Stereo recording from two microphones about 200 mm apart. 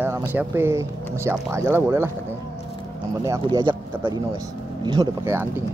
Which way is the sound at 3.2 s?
20° right (ahead or behind).